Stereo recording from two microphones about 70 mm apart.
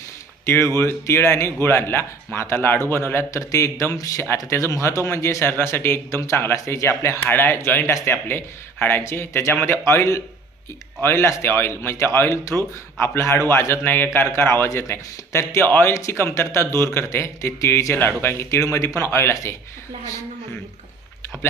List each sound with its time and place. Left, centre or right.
0.4 s speech: left
3.4 s a man's voice: left
7.3 s speech: left